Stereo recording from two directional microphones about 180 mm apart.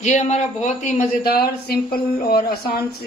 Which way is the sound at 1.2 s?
60° left (ahead or behind).